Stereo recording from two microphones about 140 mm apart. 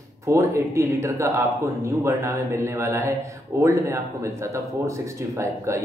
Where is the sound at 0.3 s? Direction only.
20° right (ahead or behind).